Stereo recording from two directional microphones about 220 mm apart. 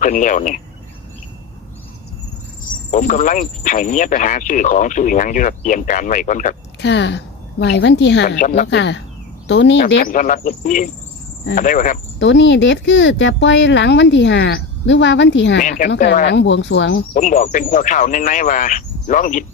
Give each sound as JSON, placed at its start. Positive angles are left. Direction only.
{"t": 0.0, "sound": "speech", "side_deg": 35}
{"t": 2.9, "sound": "speech", "side_deg": 35}
{"t": 6.8, "sound": "a woman's voice", "side_deg": 50}
{"t": 8.4, "sound": "speech", "side_deg": 35}
{"t": 8.6, "sound": "a woman's voice", "side_deg": 50}
{"t": 9.9, "sound": "speech", "side_deg": 35}
{"t": 12.2, "sound": "speech", "side_deg": 55}
{"t": 17.2, "sound": "speech", "side_deg": 35}